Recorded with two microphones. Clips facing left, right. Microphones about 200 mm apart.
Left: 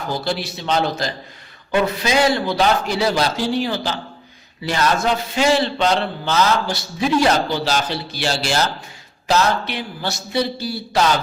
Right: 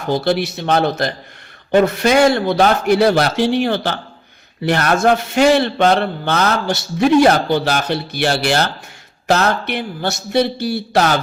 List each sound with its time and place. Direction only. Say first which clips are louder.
0.3 s a man's voice: right 5 dB; 65° right (ahead or behind)